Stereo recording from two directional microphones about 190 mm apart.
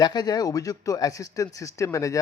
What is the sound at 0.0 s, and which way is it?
Speech, 20° left (ahead or behind).